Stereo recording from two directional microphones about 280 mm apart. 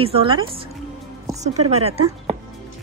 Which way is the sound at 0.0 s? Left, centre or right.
Centre.